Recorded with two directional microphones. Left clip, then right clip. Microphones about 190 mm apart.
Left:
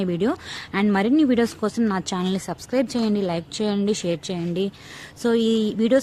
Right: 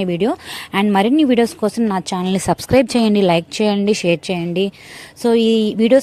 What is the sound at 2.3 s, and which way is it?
A woman's voice, 40° right (ahead or behind).